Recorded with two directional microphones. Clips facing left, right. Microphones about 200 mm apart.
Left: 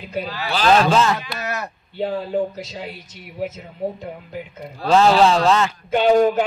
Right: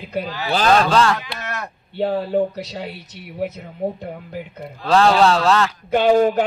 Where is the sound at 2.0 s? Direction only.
60° right (ahead or behind).